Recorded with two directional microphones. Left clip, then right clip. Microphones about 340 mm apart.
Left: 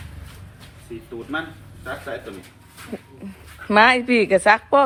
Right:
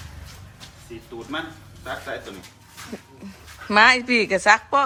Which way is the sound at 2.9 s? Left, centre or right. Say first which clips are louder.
Left 3 dB; centre.